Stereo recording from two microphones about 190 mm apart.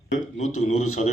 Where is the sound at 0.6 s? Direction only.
35° left (ahead or behind).